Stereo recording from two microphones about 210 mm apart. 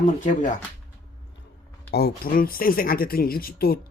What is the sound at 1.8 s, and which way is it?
Speech, 50° left (ahead or behind).